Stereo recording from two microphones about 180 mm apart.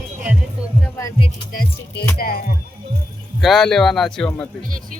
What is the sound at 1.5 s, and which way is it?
Speech, 65° left (ahead or behind).